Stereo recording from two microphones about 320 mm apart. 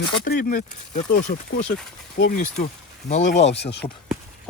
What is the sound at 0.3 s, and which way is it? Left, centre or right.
Speech, left.